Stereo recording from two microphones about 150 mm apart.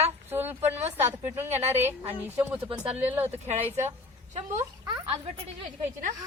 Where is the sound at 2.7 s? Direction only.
40° right (ahead or behind).